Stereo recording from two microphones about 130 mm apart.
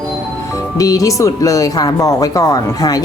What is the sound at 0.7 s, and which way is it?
Speech, 25° left (ahead or behind).